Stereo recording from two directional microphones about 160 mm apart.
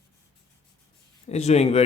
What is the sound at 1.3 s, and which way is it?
Speech, 40° left (ahead or behind).